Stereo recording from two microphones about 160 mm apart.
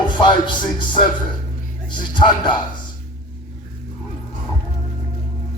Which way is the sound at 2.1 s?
30° left (ahead or behind).